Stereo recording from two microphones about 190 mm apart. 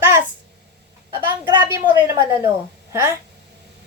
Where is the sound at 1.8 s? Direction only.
15° right (ahead or behind).